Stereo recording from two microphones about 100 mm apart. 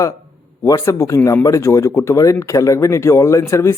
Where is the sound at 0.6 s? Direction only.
30° left (ahead or behind).